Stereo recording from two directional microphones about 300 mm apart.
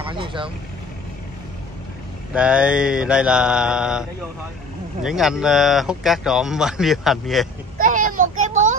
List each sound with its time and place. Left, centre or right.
0.0 s vehicle: centre
2.3 s speech: centre
7.7 s a sound: right